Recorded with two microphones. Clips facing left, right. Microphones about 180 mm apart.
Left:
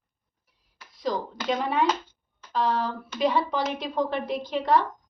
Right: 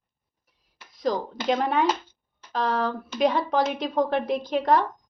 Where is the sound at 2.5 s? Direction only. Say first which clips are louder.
Right 1 dB; 45° right (ahead or behind).